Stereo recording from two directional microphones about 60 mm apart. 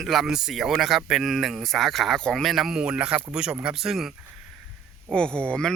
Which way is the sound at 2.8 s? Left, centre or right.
Centre.